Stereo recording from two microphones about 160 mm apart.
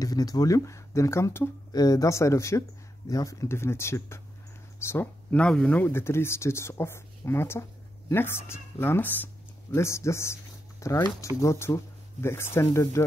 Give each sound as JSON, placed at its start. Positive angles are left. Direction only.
{"t": 0.0, "sound": "speech", "side_deg": 25}